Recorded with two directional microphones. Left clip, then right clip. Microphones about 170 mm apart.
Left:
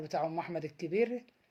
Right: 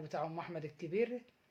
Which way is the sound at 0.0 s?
40° left (ahead or behind).